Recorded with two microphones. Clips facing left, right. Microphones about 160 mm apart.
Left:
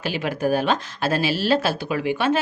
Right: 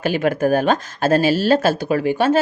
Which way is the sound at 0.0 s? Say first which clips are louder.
Right 6 dB; 50° right (ahead or behind).